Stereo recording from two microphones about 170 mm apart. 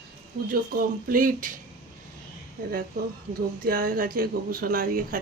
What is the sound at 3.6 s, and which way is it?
Speech, 55° right (ahead or behind).